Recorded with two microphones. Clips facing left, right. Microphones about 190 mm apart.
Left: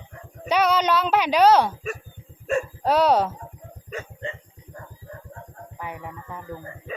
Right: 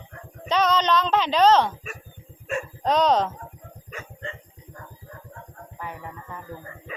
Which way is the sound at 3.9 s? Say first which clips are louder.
Left 5 dB; 25° left (ahead or behind).